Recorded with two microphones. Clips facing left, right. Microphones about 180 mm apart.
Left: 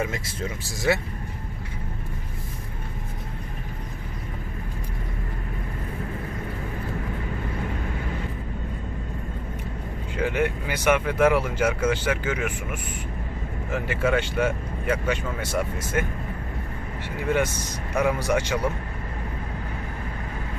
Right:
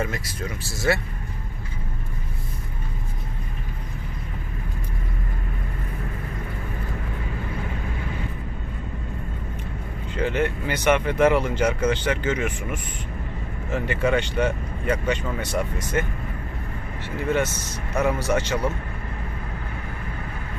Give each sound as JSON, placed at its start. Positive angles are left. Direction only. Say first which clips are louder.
{"t": 0.1, "sound": "speech", "louder": "even", "side_deg": 25}
{"t": 10.2, "sound": "speech", "louder": "right 1 dB", "side_deg": 10}
{"t": 17.2, "sound": "speech", "louder": "even", "side_deg": 10}